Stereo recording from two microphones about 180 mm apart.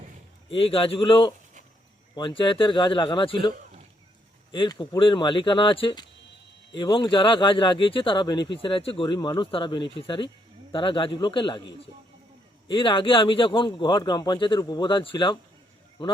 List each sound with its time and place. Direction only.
0.5 s speech: 30° left (ahead or behind)
4.5 s speech: 25° left (ahead or behind)